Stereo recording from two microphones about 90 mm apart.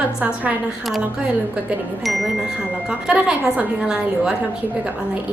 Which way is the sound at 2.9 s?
10° right (ahead or behind).